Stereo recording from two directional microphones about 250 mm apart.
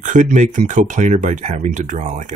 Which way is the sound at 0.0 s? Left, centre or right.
Right.